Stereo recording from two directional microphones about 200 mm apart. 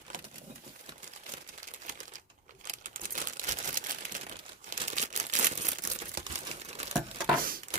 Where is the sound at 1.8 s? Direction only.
40° right (ahead or behind).